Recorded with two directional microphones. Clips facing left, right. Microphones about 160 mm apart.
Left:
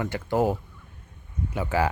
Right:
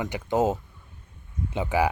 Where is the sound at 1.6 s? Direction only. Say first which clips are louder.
Right 1 dB; 15° right (ahead or behind).